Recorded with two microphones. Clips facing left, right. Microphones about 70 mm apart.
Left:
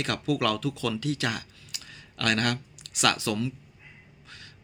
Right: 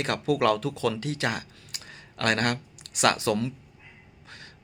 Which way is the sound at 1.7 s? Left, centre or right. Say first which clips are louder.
Right 1 dB; right.